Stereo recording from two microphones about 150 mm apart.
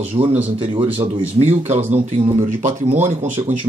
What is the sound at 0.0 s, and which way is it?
Speech, 40° right (ahead or behind).